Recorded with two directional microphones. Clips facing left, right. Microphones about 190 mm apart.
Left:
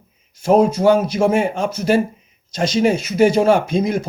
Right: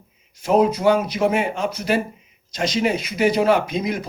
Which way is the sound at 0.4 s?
50° left (ahead or behind).